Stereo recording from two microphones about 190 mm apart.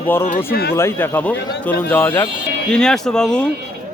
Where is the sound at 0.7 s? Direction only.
15° left (ahead or behind).